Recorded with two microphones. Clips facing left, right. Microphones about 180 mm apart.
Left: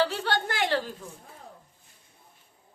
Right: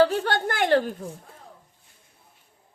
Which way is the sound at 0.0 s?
50° right (ahead or behind).